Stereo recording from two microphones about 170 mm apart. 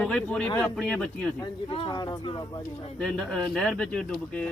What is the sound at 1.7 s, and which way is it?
Speech, 25° left (ahead or behind).